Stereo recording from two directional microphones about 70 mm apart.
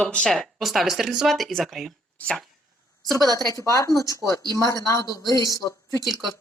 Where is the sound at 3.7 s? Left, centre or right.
Left.